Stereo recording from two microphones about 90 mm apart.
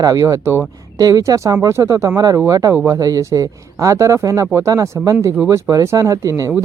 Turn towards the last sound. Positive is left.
turn(degrees=-40)  # may be behind; listen again after turning